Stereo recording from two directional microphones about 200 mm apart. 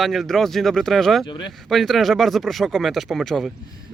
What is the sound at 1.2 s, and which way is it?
Speech, 25° left (ahead or behind).